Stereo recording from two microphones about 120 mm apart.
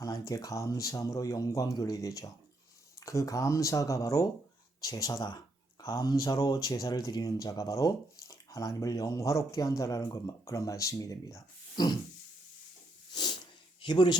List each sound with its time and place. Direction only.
0.0 s speech: 30° left (ahead or behind)
13.8 s speech: 40° left (ahead or behind)